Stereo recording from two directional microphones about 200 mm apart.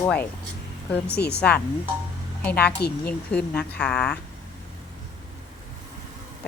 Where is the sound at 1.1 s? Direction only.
55° left (ahead or behind).